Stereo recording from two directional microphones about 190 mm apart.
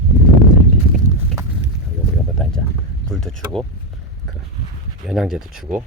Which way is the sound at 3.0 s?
5° left (ahead or behind).